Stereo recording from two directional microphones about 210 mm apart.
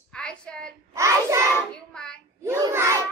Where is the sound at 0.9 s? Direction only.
15° right (ahead or behind).